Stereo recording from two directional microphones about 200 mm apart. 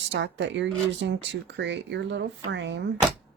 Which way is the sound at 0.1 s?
65° right (ahead or behind).